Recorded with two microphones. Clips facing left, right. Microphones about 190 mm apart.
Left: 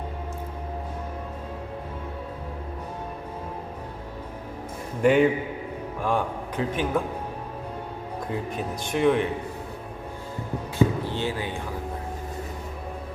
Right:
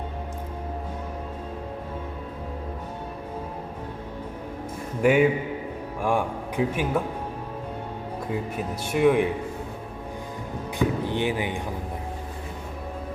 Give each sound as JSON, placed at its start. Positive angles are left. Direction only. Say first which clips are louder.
{"t": 5.0, "sound": "a man's voice", "louder": "even", "side_deg": -10}
{"t": 8.5, "sound": "speech", "louder": "right 1 dB", "side_deg": -10}
{"t": 10.8, "sound": "speech", "louder": "left 1 dB", "side_deg": -15}